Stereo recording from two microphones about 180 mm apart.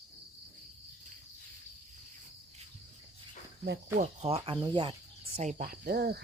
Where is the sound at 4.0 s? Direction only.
35° right (ahead or behind).